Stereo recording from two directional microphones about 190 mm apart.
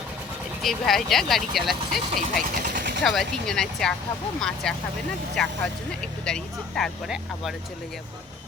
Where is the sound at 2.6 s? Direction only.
45° right (ahead or behind).